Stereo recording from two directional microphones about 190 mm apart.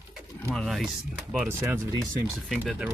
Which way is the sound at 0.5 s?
Centre (ahead or behind).